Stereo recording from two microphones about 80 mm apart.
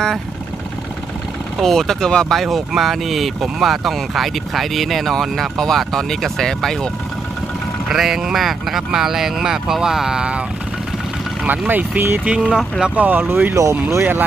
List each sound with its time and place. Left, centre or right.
1.6 s speech: centre
7.9 s speech: centre
11.4 s speech: right
12.3 s speech: centre
13.6 s speech: right